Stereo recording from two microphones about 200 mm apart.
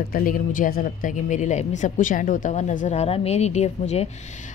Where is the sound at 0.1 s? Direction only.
45° left (ahead or behind).